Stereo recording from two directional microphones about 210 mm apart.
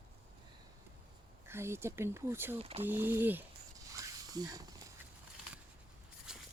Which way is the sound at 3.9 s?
15° right (ahead or behind).